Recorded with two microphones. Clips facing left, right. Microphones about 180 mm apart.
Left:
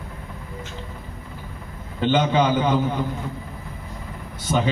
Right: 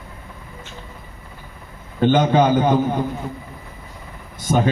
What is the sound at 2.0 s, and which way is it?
A man's voice, 45° right (ahead or behind).